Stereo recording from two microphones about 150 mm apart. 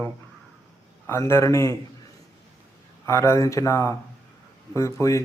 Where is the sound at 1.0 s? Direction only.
20° left (ahead or behind).